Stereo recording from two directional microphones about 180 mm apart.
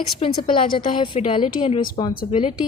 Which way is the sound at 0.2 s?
30° left (ahead or behind).